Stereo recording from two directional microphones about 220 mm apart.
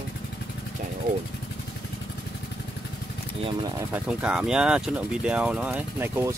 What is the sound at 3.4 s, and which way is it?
Speech, 25° right (ahead or behind).